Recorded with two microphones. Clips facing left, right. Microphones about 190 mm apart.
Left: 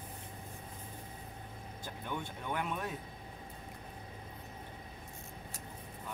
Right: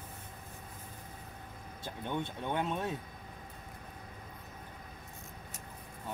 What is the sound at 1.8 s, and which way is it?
Speech, 25° right (ahead or behind).